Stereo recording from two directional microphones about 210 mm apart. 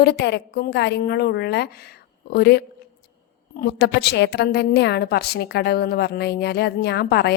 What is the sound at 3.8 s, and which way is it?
A woman's voice, 55° left (ahead or behind).